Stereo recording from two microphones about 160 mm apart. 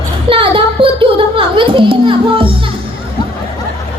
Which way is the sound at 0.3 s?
35° right (ahead or behind).